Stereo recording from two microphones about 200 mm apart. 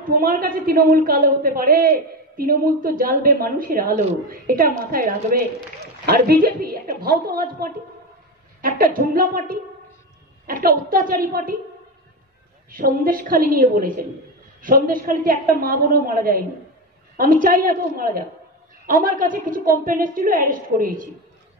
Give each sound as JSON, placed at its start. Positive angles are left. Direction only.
{"t": 0.0, "sound": "a woman's voice", "side_deg": -45}
{"t": 12.7, "sound": "a woman's voice", "side_deg": -45}